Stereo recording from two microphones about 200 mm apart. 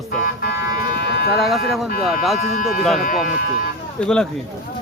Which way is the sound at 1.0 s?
55° left (ahead or behind).